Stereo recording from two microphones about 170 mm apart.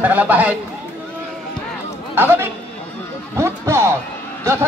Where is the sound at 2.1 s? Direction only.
15° right (ahead or behind).